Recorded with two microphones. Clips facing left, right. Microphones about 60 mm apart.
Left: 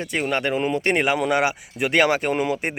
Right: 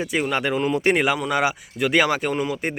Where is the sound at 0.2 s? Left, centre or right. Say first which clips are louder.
Left 1 dB; centre.